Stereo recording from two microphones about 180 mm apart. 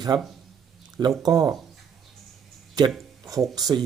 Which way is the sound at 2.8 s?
20° right (ahead or behind).